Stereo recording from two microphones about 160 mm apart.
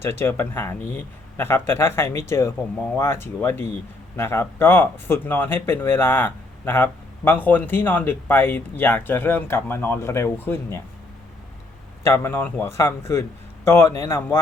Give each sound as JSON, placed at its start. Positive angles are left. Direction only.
{"t": 0.0, "sound": "speech", "side_deg": 15}
{"t": 12.0, "sound": "speech", "side_deg": 15}